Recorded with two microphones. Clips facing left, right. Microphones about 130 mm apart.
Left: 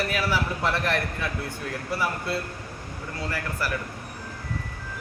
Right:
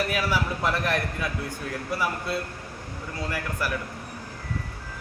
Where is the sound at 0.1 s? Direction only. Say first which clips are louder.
Even; 10° right (ahead or behind).